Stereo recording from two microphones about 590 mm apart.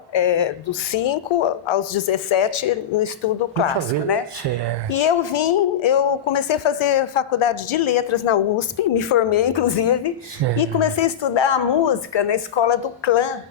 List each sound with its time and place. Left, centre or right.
0.1 s a woman's voice: left
4.9 s a woman's voice: left